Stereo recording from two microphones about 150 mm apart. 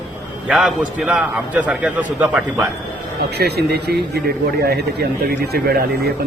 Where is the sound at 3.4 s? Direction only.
90° right.